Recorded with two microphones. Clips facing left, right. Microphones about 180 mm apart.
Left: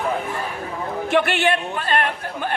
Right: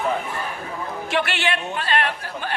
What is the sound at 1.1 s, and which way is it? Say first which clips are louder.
A woman's voice: left 5 dB; 50° left (ahead or behind).